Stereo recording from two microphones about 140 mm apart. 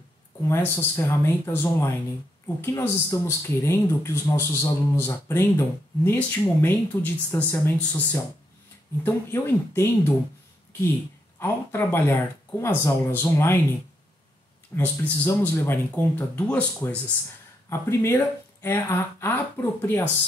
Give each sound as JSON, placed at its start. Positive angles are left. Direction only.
{"t": 0.4, "sound": "speech", "side_deg": 15}
{"t": 7.7, "sound": "speech", "side_deg": 10}
{"t": 11.3, "sound": "speech", "side_deg": 15}
{"t": 14.8, "sound": "speech", "side_deg": 15}